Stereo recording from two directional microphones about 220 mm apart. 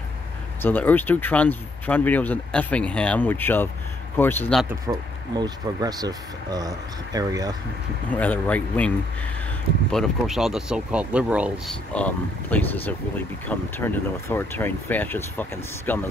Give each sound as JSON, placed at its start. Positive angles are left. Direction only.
{"t": 0.6, "sound": "speech", "side_deg": 10}
{"t": 4.6, "sound": "speech", "side_deg": -15}
{"t": 8.2, "sound": "speech", "side_deg": 5}
{"t": 11.9, "sound": "speech", "side_deg": 5}